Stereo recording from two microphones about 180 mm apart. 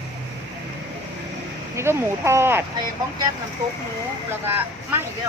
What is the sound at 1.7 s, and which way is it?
Speech, 15° right (ahead or behind).